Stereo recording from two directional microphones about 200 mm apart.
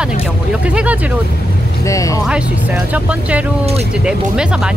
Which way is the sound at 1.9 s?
15° left (ahead or behind).